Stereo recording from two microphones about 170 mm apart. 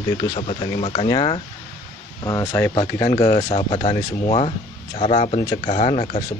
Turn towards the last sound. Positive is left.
turn(degrees=40)  # may be behind; listen again after turning